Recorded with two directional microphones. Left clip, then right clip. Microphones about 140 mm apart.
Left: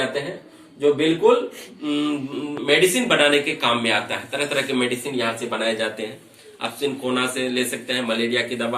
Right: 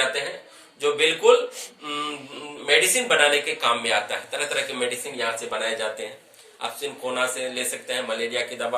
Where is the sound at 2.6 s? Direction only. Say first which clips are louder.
Left 2 dB; 15° right (ahead or behind).